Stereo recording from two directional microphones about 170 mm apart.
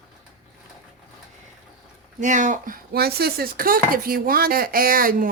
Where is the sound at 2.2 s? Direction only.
45° right (ahead or behind).